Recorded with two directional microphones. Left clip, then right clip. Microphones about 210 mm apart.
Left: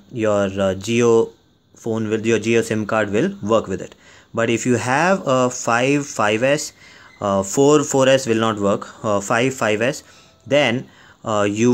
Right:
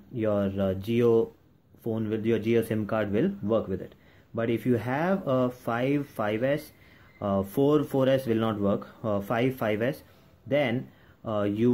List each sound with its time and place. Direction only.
0.1 s speech: 20° left (ahead or behind)